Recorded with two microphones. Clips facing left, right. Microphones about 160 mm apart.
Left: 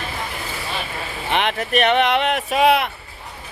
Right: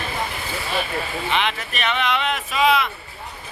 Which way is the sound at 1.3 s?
55° left (ahead or behind).